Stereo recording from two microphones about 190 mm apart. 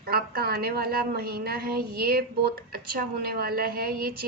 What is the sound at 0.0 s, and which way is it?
A woman's voice, 55° right (ahead or behind).